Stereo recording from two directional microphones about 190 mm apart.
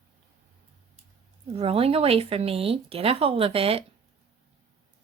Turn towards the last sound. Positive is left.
turn(degrees=-30)  # may be behind; listen again after turning